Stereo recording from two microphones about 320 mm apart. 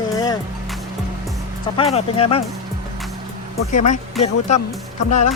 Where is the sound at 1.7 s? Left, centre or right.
Centre.